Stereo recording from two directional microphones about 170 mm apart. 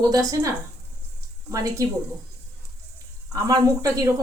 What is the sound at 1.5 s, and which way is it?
Speech, 20° right (ahead or behind).